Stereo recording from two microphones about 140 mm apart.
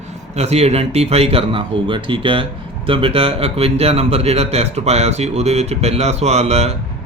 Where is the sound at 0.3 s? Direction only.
50° right (ahead or behind).